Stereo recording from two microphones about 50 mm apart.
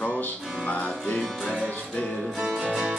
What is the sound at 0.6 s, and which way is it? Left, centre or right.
Music, left.